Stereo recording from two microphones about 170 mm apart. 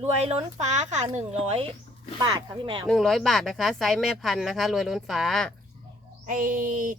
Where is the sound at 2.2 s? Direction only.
25° right (ahead or behind).